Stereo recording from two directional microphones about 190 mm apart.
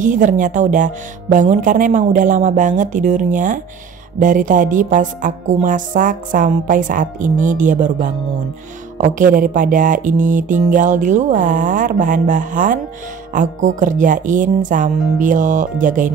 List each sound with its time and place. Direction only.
0.0 s a woman's voice: 40° right (ahead or behind)